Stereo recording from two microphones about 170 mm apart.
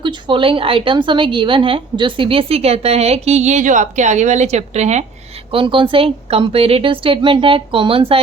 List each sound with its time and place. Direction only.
0.0 s a woman's voice: 30° right (ahead or behind)
5.5 s a woman's voice: 30° right (ahead or behind)